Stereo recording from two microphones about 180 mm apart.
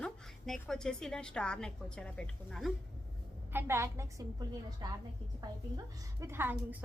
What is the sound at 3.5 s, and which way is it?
A woman's voice, 15° right (ahead or behind).